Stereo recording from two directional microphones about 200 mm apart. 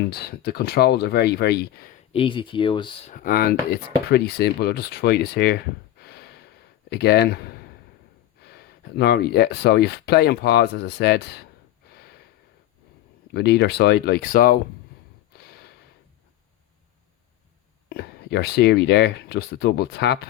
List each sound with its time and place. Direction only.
0.0 s speech: 50° left (ahead or behind)
2.1 s speech: 25° left (ahead or behind)
3.1 s speech: 45° left (ahead or behind)
6.0 s gasp: 55° left (ahead or behind)
6.9 s speech: 55° left (ahead or behind)
11.9 s a sound: 50° left (ahead or behind)
13.3 s speech: 55° left (ahead or behind)
15.4 s a sound: 50° left (ahead or behind)
17.8 s speech: 55° left (ahead or behind)